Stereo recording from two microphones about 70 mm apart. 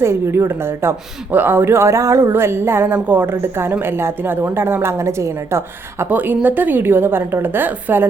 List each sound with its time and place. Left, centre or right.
0.0 s speech: right
6.1 s a woman's voice: right